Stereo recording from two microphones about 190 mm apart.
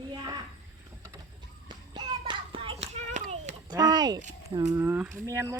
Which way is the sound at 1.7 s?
25° right (ahead or behind).